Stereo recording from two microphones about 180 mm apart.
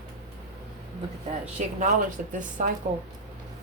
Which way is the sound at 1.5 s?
45° right (ahead or behind).